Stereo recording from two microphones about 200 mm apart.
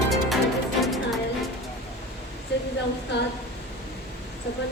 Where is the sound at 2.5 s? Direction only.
60° left (ahead or behind).